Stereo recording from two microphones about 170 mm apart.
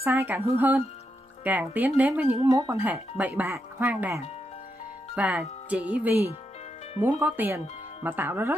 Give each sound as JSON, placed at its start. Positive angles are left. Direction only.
{"t": 0.0, "sound": "speech", "side_deg": -10}
{"t": 2.4, "sound": "speech", "side_deg": -20}
{"t": 2.8, "sound": "speech", "side_deg": -10}